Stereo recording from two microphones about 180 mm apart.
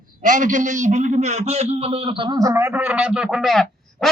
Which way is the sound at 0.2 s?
45° right (ahead or behind).